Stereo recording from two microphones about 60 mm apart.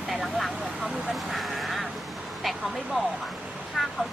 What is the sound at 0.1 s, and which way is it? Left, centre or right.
Vehicle, centre.